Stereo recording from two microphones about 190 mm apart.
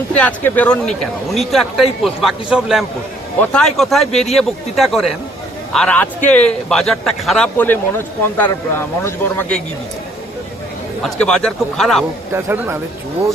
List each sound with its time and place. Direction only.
0.1 s a man's voice: 5° left (ahead or behind)
11.0 s speech: 5° left (ahead or behind)
12.3 s speech: 10° right (ahead or behind)